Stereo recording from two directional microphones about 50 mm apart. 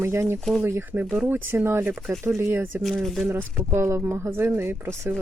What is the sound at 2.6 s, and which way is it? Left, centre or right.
Speech, right.